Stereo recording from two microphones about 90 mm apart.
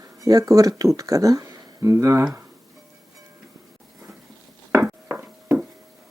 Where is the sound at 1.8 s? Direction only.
30° right (ahead or behind).